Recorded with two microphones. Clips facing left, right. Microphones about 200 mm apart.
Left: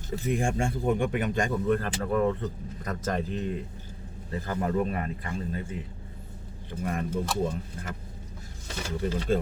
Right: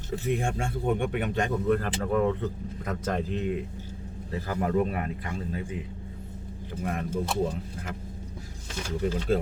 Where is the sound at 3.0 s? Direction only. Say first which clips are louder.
Even; 5° left (ahead or behind).